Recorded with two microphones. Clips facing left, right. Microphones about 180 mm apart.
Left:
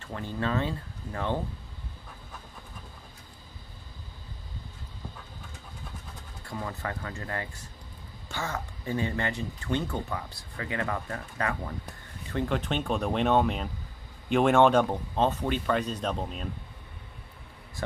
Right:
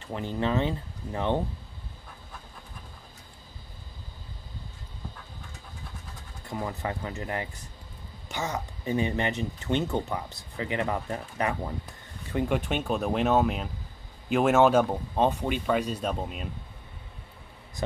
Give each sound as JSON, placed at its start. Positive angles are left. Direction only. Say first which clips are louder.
{"t": 0.0, "sound": "speech", "louder": "right 3 dB", "side_deg": -20}
{"t": 6.4, "sound": "speech", "louder": "right 3 dB", "side_deg": -20}